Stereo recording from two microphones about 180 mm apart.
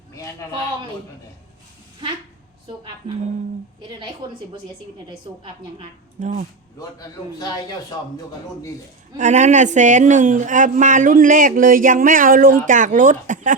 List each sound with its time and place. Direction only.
0.1 s a sound: 15° left (ahead or behind)
6.1 s speech: 40° right (ahead or behind)
7.3 s speech: 20° left (ahead or behind)
9.1 s a man's voice: 40° right (ahead or behind)